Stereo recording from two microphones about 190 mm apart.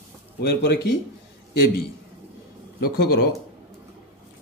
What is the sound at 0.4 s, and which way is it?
Speech, 60° left (ahead or behind).